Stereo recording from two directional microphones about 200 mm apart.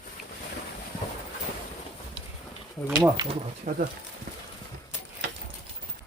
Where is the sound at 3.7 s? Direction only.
45° right (ahead or behind).